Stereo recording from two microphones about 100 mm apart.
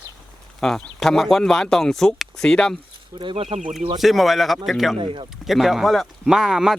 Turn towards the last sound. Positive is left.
turn(degrees=-5)  # may be behind; listen again after turning